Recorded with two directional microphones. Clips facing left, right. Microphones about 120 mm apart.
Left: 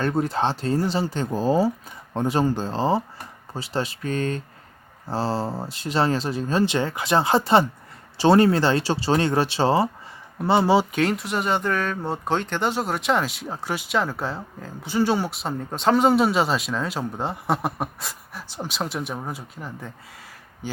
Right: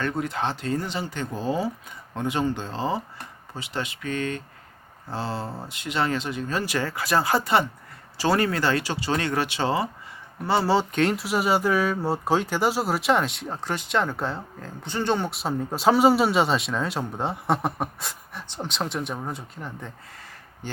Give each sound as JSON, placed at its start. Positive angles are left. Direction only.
{"t": 0.0, "sound": "speech", "side_deg": 35}
{"t": 10.4, "sound": "speech", "side_deg": 20}
{"t": 11.0, "sound": "speech", "side_deg": 0}